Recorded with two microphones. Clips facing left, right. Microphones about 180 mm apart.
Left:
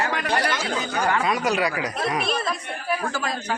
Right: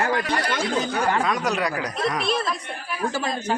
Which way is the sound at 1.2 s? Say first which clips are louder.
Left 1 dB; 5° left (ahead or behind).